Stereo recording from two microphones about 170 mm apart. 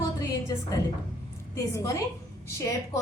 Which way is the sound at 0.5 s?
20° left (ahead or behind).